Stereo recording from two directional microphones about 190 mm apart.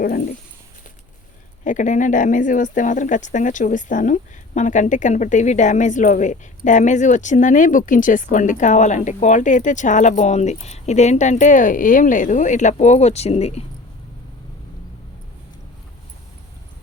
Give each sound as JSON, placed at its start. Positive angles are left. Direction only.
{"t": 0.0, "sound": "speech", "side_deg": 50}
{"t": 1.6, "sound": "speech", "side_deg": 40}